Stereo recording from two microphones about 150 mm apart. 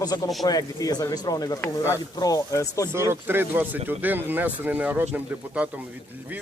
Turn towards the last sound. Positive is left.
turn(degrees=-10)  # may be behind; listen again after turning